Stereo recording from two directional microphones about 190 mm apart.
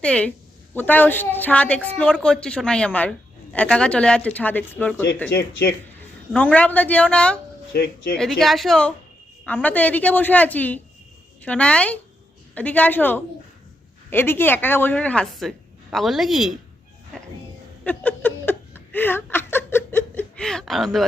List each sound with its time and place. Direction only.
0.0 s a woman's voice: 5° left (ahead or behind)
5.3 s speech: 55° left (ahead or behind)
6.3 s a woman's voice: 5° left (ahead or behind)
7.7 s speech: 55° left (ahead or behind)
8.1 s a woman's voice: centre (ahead or behind)
17.1 s music: 5° left (ahead or behind)
17.8 s a sound: 10° left (ahead or behind)